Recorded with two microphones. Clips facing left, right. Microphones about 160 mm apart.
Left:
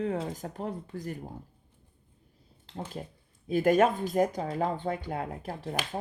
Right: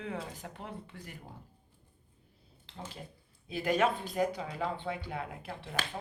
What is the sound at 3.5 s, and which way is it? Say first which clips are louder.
Speech: left 6 dB; 45° left (ahead or behind).